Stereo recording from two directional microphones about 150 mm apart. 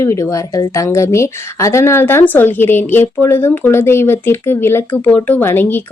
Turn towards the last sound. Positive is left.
turn(degrees=15)  # may be behind; listen again after turning